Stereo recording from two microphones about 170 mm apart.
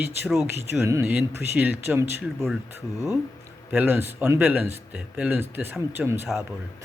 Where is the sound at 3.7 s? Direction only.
10° right (ahead or behind).